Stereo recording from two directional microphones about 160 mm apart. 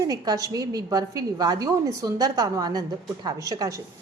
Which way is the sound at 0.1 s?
25° right (ahead or behind).